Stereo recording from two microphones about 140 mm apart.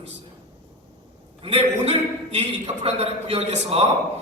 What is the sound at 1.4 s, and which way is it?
A man's voice, 45° right (ahead or behind).